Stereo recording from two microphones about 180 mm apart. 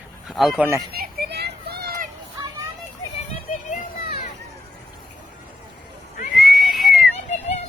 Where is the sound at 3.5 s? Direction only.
45° left (ahead or behind).